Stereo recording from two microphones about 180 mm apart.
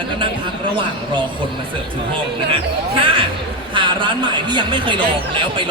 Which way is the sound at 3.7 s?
25° right (ahead or behind).